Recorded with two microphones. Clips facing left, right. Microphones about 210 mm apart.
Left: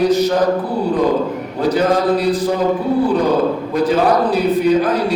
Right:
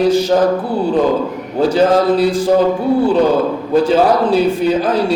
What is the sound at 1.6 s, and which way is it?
Speech, 30° right (ahead or behind).